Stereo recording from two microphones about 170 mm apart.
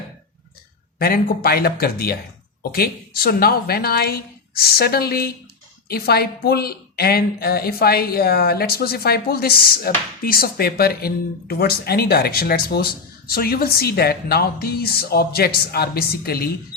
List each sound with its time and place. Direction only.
0.9 s a woman's voice: 60° left (ahead or behind)